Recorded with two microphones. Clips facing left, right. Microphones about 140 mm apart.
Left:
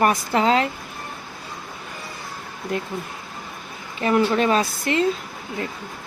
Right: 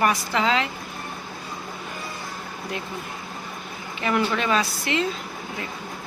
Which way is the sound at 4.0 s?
35° left (ahead or behind).